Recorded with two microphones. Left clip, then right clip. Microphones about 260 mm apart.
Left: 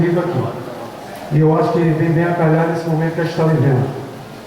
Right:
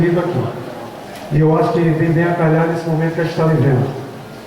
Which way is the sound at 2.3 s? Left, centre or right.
Centre.